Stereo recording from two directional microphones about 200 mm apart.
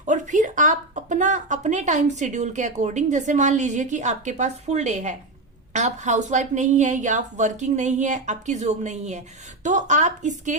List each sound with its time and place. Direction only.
0.0 s speech: 40° right (ahead or behind)